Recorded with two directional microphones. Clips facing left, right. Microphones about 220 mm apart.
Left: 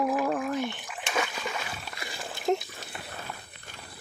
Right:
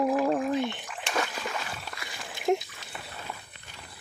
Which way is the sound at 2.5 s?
10° right (ahead or behind).